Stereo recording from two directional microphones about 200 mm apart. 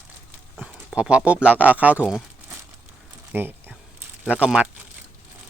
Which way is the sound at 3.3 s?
10° right (ahead or behind).